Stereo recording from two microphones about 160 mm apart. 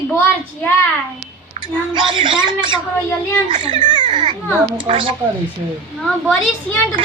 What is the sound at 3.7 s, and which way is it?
Speech, 30° right (ahead or behind).